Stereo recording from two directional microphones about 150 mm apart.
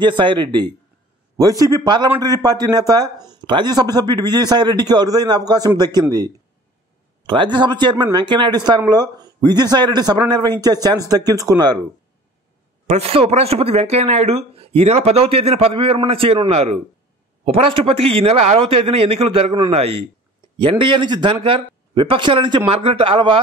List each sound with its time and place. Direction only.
0.0 s a man's voice: 30° right (ahead or behind)
12.8 s a man's voice: 45° right (ahead or behind)